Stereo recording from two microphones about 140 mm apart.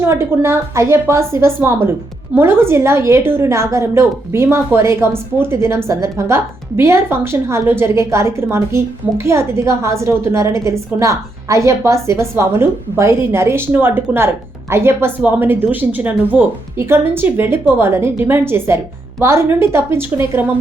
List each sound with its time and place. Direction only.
0.0 s a woman's voice: 20° right (ahead or behind)